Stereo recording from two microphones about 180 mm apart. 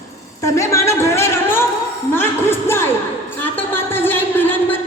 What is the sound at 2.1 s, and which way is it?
Music, 15° left (ahead or behind).